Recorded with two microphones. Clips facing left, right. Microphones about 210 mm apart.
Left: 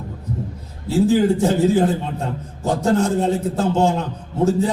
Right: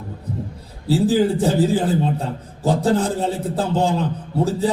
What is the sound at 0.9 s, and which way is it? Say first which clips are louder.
A man's voice: left 1 dB; 35° right (ahead or behind).